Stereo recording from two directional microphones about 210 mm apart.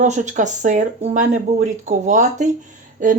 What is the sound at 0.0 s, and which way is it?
Speech, 35° right (ahead or behind).